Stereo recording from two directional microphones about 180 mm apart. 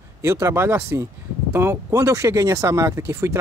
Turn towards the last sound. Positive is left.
turn(degrees=-15)  # may be behind; listen again after turning